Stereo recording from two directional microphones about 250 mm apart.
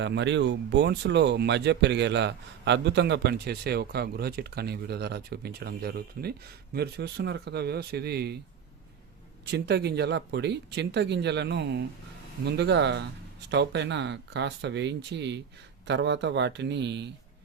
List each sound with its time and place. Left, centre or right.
0.0 s speech: right
9.5 s speech: right